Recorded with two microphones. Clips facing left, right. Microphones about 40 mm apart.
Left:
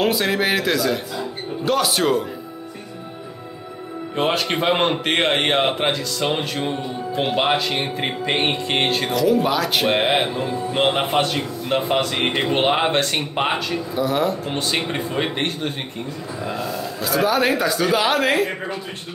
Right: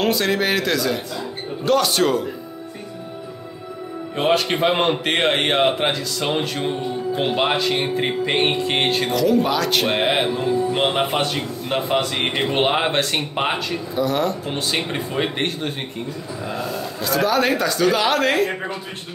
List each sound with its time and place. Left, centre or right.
0.0 s a man's voice: centre
4.2 s a man's voice: centre
16.5 s a man's voice: right
17.0 s a man's voice: centre